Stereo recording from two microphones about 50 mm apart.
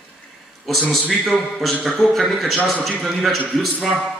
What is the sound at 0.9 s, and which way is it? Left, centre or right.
A man's voice, centre.